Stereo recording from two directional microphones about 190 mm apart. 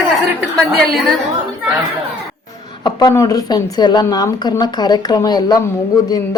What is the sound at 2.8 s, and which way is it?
Speech, 20° left (ahead or behind).